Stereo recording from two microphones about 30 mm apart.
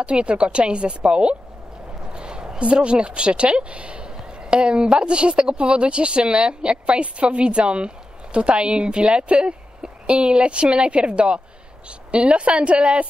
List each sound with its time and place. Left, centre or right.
0.0 s speech: right
2.1 s a sound: right
2.6 s speech: right